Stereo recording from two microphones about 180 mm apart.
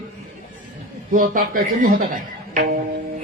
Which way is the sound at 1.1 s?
50° right (ahead or behind).